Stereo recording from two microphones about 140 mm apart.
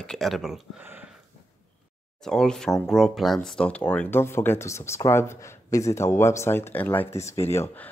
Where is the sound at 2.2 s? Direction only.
5° left (ahead or behind).